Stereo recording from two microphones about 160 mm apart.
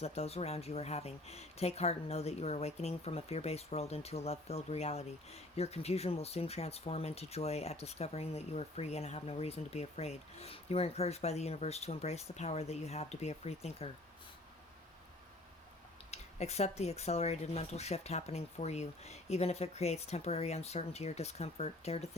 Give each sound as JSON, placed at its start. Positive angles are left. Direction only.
{"t": 0.0, "sound": "speech", "side_deg": 40}
{"t": 16.1, "sound": "speech", "side_deg": 40}